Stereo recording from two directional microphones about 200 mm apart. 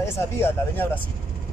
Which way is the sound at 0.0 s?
10° left (ahead or behind).